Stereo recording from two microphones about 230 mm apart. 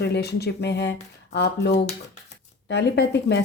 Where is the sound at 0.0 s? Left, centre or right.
Left.